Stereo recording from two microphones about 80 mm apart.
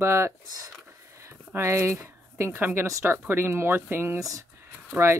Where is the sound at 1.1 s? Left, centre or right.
Right.